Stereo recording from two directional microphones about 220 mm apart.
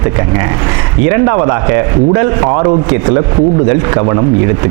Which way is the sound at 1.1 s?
25° right (ahead or behind).